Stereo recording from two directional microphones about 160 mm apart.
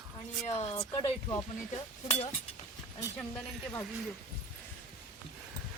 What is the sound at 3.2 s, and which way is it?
Speech, 5° left (ahead or behind).